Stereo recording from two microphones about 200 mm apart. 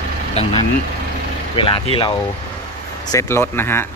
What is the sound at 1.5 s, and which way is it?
Speech, 25° left (ahead or behind).